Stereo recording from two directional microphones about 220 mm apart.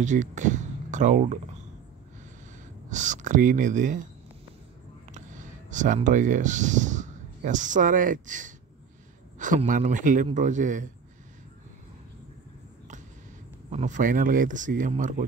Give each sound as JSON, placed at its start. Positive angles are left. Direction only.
{"t": 0.0, "sound": "speech", "side_deg": -35}
{"t": 2.9, "sound": "speech", "side_deg": -35}
{"t": 5.1, "sound": "speech", "side_deg": -35}
{"t": 13.7, "sound": "speech", "side_deg": -35}